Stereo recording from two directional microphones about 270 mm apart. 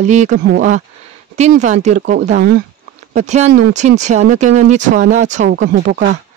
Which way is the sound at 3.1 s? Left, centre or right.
Right.